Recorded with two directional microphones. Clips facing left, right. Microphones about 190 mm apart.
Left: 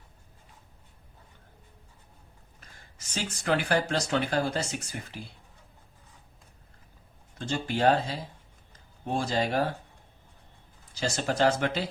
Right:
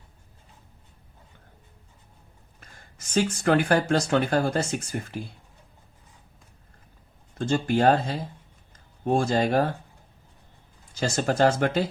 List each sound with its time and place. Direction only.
3.2 s speech: 55° right (ahead or behind)
7.3 s speech: 50° right (ahead or behind)
9.1 s speech: 50° right (ahead or behind)
11.0 s speech: 50° right (ahead or behind)